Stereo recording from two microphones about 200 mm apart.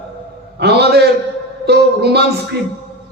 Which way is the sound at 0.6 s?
55° right (ahead or behind).